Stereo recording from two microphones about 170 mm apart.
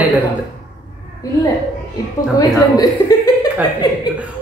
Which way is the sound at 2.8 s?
20° left (ahead or behind).